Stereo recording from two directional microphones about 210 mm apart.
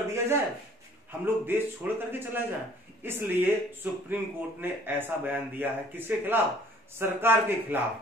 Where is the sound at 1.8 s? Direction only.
5° right (ahead or behind).